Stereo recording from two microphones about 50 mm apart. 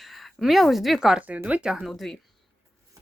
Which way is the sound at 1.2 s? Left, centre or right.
Right.